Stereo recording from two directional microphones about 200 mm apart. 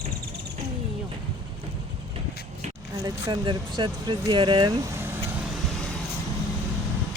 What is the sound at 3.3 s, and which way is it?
Speech, 25° right (ahead or behind).